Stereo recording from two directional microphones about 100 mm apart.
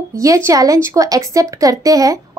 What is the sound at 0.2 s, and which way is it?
Speech, 35° right (ahead or behind).